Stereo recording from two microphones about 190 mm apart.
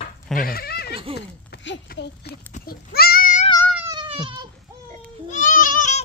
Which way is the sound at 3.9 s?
25° right (ahead or behind).